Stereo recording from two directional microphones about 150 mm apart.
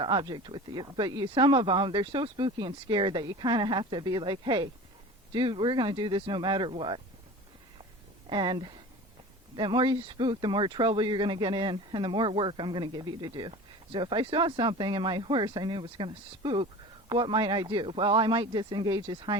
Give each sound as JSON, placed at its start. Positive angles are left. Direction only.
{"t": 0.0, "sound": "speech", "side_deg": -35}
{"t": 8.3, "sound": "speech", "side_deg": -30}